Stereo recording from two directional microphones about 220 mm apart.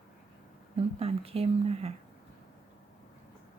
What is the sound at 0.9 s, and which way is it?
Speech, 25° right (ahead or behind).